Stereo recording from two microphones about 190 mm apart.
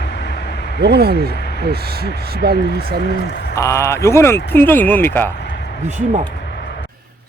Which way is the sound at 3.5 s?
15° left (ahead or behind).